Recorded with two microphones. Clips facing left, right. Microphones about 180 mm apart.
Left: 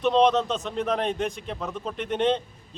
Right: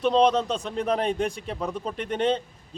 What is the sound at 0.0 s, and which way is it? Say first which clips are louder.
A man's voice: even; 5° right (ahead or behind).